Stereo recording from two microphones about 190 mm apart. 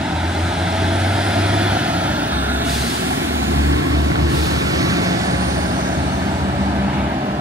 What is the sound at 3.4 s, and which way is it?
Vehicle, 90° right.